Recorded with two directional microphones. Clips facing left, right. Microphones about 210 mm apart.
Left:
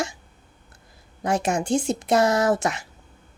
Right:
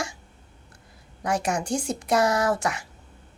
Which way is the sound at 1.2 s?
25° left (ahead or behind).